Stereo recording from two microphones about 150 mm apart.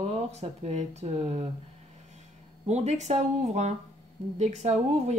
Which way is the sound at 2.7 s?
50° right (ahead or behind).